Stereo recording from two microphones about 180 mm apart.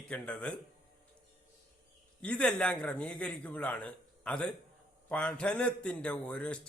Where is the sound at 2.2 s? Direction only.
5° left (ahead or behind).